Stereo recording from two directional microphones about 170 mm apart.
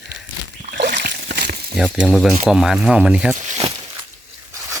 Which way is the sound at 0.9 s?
70° right (ahead or behind).